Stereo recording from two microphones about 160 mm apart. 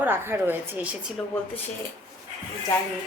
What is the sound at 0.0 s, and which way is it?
Speech, 15° right (ahead or behind).